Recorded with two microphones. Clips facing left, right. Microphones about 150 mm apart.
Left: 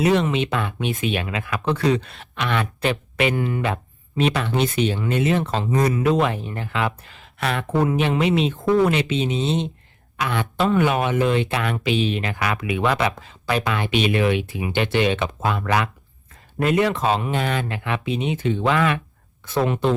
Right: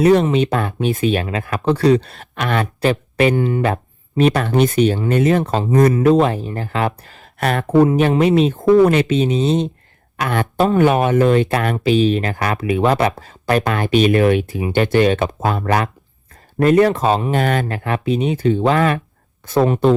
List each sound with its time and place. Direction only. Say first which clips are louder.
0.0 s speech: right 6 dB; 45° right (ahead or behind)
3.3 s speech: right 6 dB; 25° right (ahead or behind)
4.2 s speech: right 6 dB; 45° right (ahead or behind)
17.3 s speech: right 6 dB; 50° right (ahead or behind)